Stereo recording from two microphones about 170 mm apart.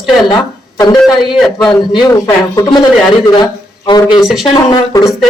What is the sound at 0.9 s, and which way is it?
A man's voice, centre (ahead or behind).